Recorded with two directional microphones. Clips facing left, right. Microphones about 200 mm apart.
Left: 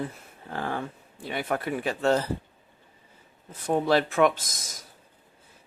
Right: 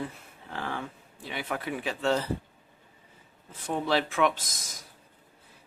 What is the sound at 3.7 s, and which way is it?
Speech, 45° left (ahead or behind).